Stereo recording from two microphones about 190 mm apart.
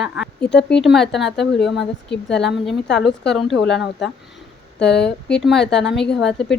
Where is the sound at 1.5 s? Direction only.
65° left (ahead or behind).